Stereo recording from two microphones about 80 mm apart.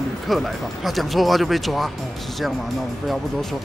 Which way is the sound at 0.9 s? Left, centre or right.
Centre.